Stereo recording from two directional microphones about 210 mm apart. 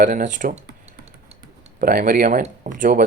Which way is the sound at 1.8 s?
45° right (ahead or behind).